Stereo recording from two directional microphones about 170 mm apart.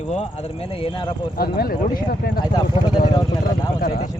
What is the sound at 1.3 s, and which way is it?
Speech, 60° left (ahead or behind).